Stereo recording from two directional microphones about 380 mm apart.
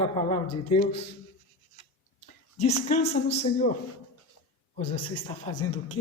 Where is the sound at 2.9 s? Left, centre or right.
Left.